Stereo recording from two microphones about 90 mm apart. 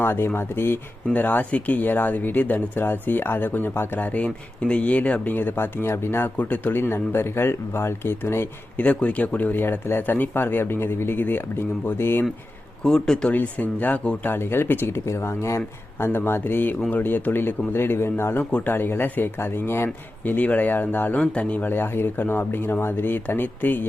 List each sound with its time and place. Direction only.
0.0 s speech: 25° left (ahead or behind)
8.8 s speech: 15° left (ahead or behind)
12.8 s speech: 5° left (ahead or behind)
13.3 s speech: 20° left (ahead or behind)